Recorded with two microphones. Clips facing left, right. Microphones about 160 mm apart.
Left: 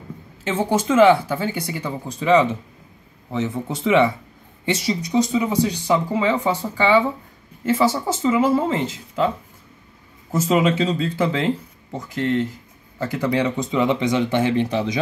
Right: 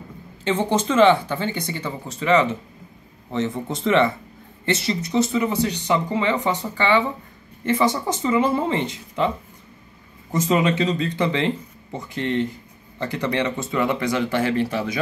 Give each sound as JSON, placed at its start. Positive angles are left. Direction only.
{"t": 0.4, "sound": "speech", "side_deg": 5}
{"t": 10.3, "sound": "speech", "side_deg": 5}